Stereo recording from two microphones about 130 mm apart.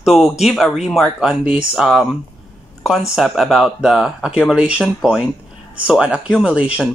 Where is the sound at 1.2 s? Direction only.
10° right (ahead or behind).